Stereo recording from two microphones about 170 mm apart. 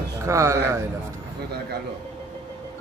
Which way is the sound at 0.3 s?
15° right (ahead or behind).